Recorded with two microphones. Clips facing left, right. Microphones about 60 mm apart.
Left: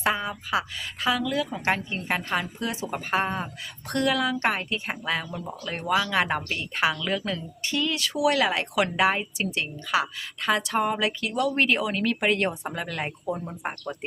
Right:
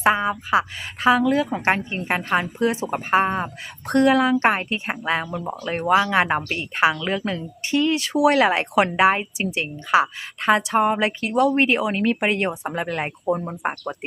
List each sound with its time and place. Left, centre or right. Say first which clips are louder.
0.0 s a woman's voice: right 7 dB; right
12.7 s a woman's voice: right 5 dB; right